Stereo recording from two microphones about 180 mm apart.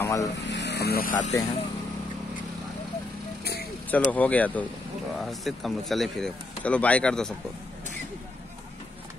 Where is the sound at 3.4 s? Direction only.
60° left (ahead or behind).